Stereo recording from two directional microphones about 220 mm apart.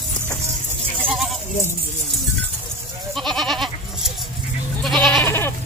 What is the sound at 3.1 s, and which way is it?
Goat, centre (ahead or behind).